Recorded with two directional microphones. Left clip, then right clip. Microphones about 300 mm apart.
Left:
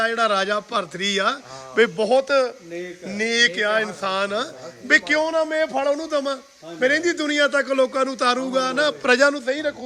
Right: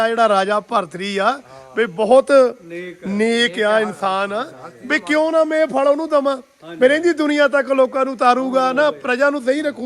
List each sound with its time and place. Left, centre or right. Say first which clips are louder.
0.0 s a man's voice: right 5 dB; centre
9.4 s a man's voice: right 5 dB; centre